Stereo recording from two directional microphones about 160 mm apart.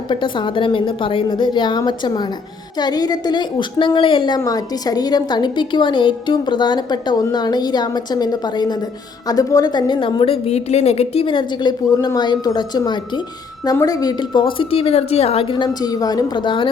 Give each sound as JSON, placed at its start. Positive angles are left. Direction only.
{"t": 0.1, "sound": "a woman's voice", "side_deg": 30}